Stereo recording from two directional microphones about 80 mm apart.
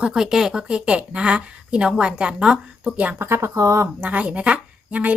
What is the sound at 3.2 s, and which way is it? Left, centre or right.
Speech, right.